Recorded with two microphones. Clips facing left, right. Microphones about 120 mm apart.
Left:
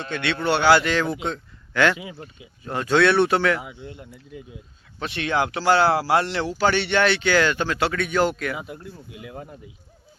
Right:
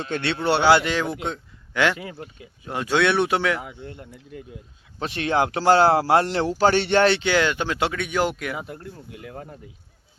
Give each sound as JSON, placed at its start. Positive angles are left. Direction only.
{"t": 0.1, "sound": "speech", "side_deg": -35}
{"t": 1.0, "sound": "speech", "side_deg": 0}
{"t": 1.3, "sound": "a sound", "side_deg": -10}
{"t": 2.0, "sound": "speech", "side_deg": 10}
{"t": 2.6, "sound": "speech", "side_deg": -10}
{"t": 3.7, "sound": "speech", "side_deg": -50}
{"t": 3.9, "sound": "speech", "side_deg": 5}
{"t": 4.9, "sound": "speech", "side_deg": -35}
{"t": 7.2, "sound": "speech", "side_deg": -20}
{"t": 8.5, "sound": "speech", "side_deg": 5}